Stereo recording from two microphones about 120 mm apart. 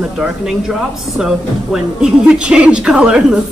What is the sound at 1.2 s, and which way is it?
A woman's voice, 5° right (ahead or behind).